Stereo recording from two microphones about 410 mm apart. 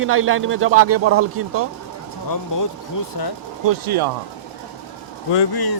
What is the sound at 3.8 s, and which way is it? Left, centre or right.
Speech, right.